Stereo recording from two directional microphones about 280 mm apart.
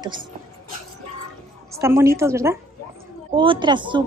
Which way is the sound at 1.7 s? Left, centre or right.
Centre.